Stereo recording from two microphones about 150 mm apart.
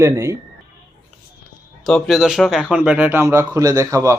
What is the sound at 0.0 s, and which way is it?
Speech, 20° right (ahead or behind).